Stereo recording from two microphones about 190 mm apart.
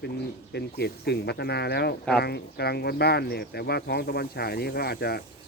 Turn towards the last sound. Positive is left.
turn(degrees=55)  # may be behind; listen again after turning